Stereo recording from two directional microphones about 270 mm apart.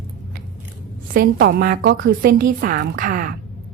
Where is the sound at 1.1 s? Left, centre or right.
Right.